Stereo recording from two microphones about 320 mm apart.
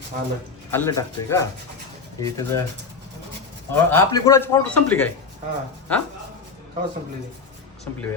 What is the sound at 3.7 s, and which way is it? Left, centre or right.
A man's voice, centre.